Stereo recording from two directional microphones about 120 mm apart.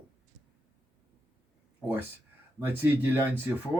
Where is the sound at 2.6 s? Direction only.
15° right (ahead or behind).